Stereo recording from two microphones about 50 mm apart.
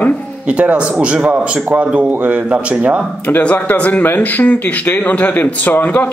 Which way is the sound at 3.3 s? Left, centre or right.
Left.